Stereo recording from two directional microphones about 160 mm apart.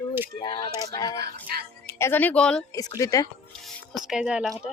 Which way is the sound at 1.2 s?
75° right (ahead or behind).